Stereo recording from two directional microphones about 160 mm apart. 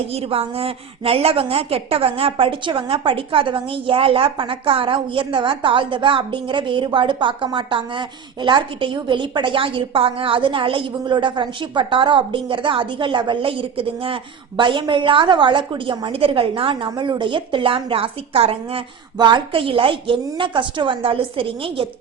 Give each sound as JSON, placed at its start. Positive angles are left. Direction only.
{"t": 0.1, "sound": "a woman's voice", "side_deg": -40}